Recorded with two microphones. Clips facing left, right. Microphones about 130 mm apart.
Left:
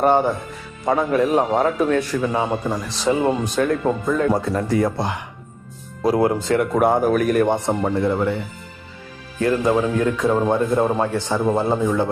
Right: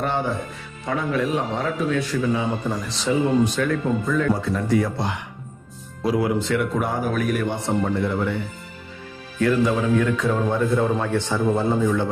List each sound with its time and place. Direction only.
0.0 s a man's voice: 45° left (ahead or behind)
7.7 s speech: 30° left (ahead or behind)
9.4 s speech: 35° left (ahead or behind)